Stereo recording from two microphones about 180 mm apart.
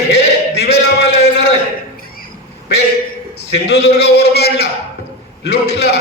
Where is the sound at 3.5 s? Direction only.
65° left (ahead or behind).